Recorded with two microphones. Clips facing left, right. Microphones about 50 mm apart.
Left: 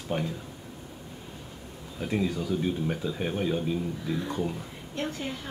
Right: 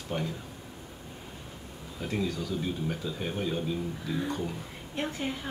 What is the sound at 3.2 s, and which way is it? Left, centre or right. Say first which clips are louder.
Speech: left 3 dB; centre.